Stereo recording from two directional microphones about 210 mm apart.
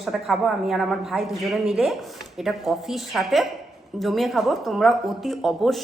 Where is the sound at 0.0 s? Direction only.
Centre (ahead or behind).